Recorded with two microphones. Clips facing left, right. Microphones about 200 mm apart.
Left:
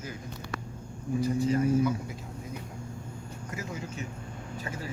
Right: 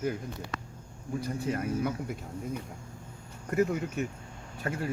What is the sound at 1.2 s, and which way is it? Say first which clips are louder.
Speech: left 7 dB; 55° right (ahead or behind).